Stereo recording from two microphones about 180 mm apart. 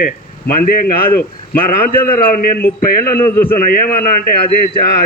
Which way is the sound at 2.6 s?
55° left (ahead or behind).